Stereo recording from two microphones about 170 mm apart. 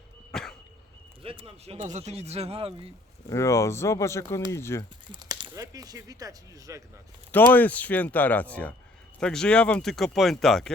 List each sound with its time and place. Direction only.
0.3 s dog: 5° left (ahead or behind)
1.2 s speech: 35° right (ahead or behind)
3.2 s speech: 15° left (ahead or behind)
5.1 s speech: 25° right (ahead or behind)
7.3 s speech: 10° left (ahead or behind)